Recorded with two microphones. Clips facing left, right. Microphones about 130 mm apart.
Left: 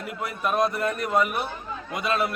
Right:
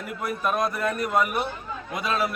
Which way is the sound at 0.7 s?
Centre (ahead or behind).